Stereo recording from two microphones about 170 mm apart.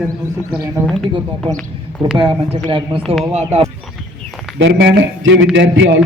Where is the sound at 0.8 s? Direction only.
15° right (ahead or behind).